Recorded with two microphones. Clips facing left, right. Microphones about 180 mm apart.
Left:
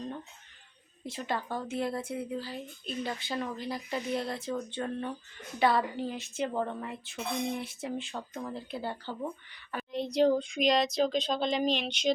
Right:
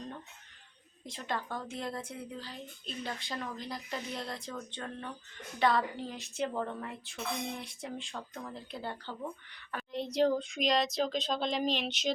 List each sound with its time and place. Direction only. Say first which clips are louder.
1.0 s speech: left 3 dB; 5° left (ahead or behind)
4.8 s speech: left 7 dB; 15° left (ahead or behind)
5.5 s speech: left 2 dB; 5° left (ahead or behind)